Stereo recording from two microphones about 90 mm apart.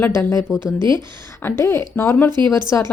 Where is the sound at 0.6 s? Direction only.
55° right (ahead or behind).